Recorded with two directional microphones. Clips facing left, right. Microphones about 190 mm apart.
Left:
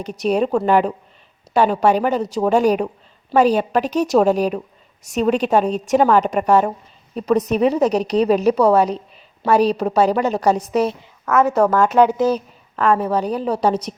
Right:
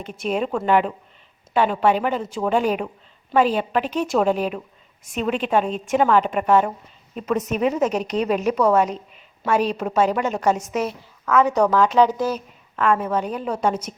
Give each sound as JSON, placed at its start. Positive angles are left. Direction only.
{"t": 0.0, "sound": "a woman's voice", "side_deg": 40}
{"t": 11.3, "sound": "speech", "side_deg": 5}
{"t": 12.2, "sound": "a woman's voice", "side_deg": 35}